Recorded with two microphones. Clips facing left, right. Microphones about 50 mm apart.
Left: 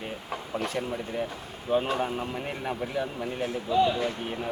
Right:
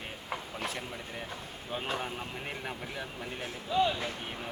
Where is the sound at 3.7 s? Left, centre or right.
Left.